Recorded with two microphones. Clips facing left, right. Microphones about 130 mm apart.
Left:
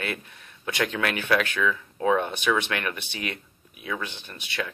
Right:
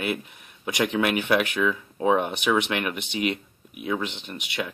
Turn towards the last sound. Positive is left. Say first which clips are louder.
# right 2 dB
turn(degrees=-20)  # may be behind; listen again after turning